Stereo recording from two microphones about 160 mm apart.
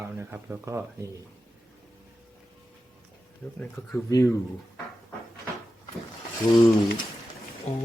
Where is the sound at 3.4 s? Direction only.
Centre (ahead or behind).